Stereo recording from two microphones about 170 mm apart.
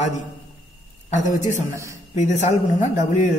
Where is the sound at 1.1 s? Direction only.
45° left (ahead or behind).